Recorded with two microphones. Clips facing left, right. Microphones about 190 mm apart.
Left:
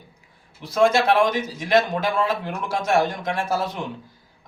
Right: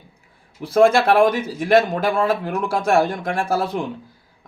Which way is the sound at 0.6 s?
55° right (ahead or behind).